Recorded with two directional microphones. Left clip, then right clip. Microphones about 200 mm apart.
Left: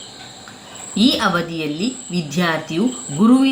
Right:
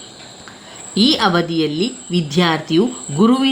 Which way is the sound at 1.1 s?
45° right (ahead or behind).